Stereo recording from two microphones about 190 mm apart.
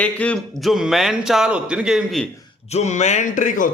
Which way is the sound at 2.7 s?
35° left (ahead or behind).